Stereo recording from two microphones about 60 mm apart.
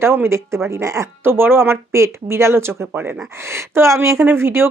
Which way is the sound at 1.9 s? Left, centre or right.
Right.